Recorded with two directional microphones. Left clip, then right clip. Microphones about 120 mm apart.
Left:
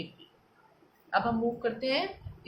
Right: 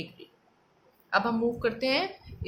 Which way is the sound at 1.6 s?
45° right (ahead or behind).